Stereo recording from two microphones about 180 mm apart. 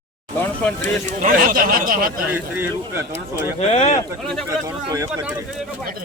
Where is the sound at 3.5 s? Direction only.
35° left (ahead or behind).